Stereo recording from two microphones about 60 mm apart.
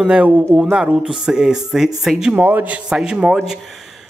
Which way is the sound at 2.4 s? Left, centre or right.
Right.